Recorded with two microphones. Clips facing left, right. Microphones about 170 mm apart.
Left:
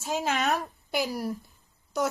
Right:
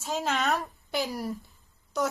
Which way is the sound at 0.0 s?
5° left (ahead or behind).